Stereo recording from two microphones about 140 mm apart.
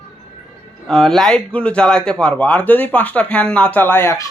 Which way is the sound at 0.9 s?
Centre (ahead or behind).